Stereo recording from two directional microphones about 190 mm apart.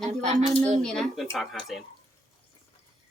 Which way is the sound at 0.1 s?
35° right (ahead or behind).